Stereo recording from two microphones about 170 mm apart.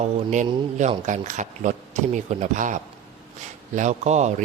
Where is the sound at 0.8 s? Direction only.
45° right (ahead or behind).